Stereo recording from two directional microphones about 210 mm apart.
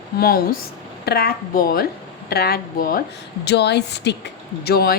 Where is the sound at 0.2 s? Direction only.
45° left (ahead or behind).